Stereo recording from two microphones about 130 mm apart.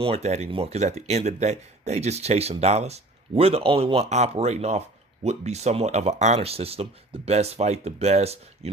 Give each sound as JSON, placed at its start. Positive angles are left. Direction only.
{"t": 0.0, "sound": "speech", "side_deg": -50}